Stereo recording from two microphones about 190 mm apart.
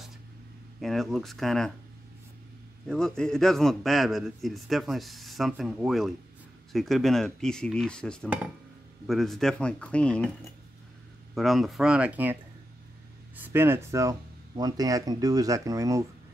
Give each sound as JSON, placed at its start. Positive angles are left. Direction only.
{"t": 0.7, "sound": "a man's voice", "side_deg": 0}
{"t": 2.9, "sound": "a man's voice", "side_deg": 5}
{"t": 11.3, "sound": "a man's voice", "side_deg": 0}
{"t": 13.4, "sound": "speech", "side_deg": -10}